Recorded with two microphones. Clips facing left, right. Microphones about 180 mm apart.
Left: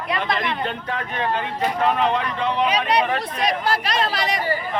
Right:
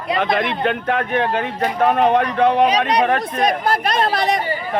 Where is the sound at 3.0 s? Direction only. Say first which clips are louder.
Right 5 dB; 50° right (ahead or behind).